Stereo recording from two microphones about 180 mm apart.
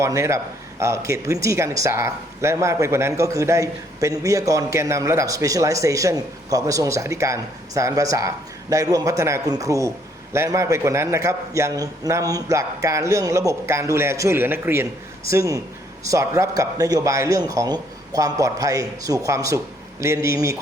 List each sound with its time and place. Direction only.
0.0 s speech: 15° right (ahead or behind)